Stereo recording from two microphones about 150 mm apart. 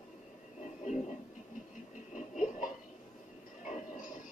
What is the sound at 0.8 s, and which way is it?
Television, 50° left (ahead or behind).